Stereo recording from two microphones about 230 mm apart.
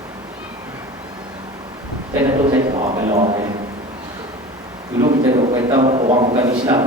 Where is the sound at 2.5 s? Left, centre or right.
Centre.